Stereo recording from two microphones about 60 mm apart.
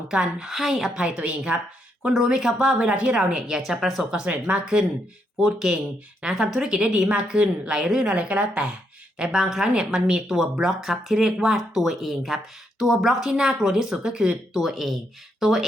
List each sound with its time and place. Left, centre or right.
0.1 s a woman's voice: centre
0.9 s a woman's voice: centre
2.0 s a woman's voice: centre
4.3 s a woman's voice: right; by 15.6 s centre